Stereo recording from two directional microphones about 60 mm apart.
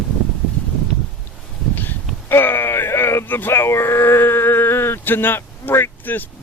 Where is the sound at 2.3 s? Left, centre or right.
Left.